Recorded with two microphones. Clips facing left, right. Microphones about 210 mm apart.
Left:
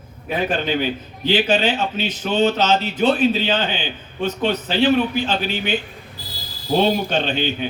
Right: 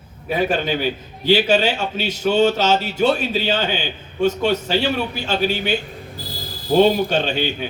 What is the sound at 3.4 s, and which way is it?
A man's voice, 45° right (ahead or behind).